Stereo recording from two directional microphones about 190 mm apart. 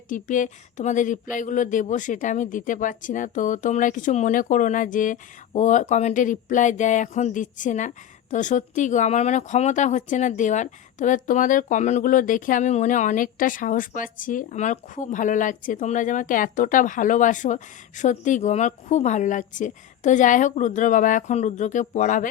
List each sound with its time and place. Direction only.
0.1 s speech: 40° left (ahead or behind)